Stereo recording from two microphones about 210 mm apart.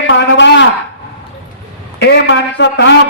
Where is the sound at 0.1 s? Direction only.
60° left (ahead or behind).